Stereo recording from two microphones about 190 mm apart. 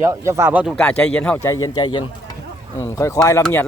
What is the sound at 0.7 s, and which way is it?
Speech, 5° left (ahead or behind).